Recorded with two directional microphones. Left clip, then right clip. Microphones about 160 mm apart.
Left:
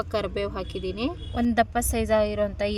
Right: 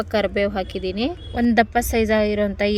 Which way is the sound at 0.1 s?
25° right (ahead or behind).